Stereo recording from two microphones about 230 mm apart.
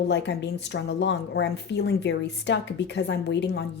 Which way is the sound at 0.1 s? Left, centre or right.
Left.